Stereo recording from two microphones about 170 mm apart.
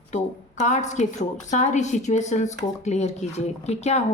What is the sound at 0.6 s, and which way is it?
Speech, 45° left (ahead or behind).